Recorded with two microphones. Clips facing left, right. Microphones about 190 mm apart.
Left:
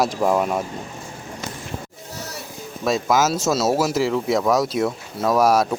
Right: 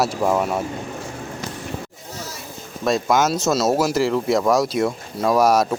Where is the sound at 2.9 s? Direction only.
Centre (ahead or behind).